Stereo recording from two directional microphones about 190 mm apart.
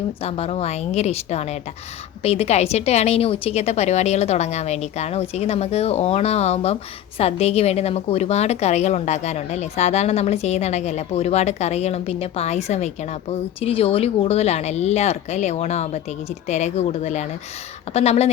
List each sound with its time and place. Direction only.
0.2 s a woman's voice: 30° left (ahead or behind)